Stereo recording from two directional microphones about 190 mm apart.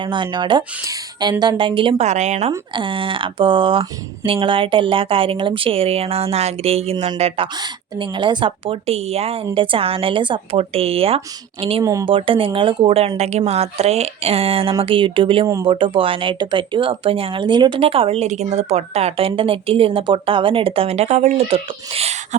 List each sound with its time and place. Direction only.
0.0 s speech: 25° right (ahead or behind)
2.5 s speech: 25° right (ahead or behind)
11.8 s speech: 15° right (ahead or behind)
12.0 s speech: 25° right (ahead or behind)